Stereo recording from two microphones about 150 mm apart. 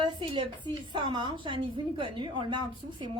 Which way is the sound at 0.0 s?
30° right (ahead or behind).